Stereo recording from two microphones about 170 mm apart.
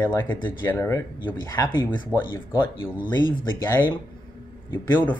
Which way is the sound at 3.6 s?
15° left (ahead or behind).